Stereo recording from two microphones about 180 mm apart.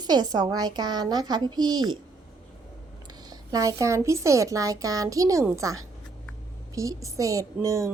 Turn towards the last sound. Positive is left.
turn(degrees=-20)  # may be behind; listen again after turning